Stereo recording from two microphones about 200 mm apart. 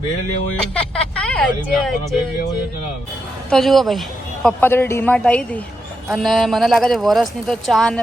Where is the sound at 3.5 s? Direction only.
Centre (ahead or behind).